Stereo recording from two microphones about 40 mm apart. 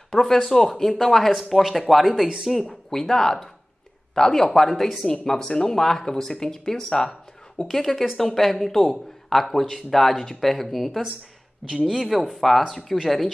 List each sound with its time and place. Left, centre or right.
0.1 s speech: centre
2.2 s speech: centre
2.9 s speech: centre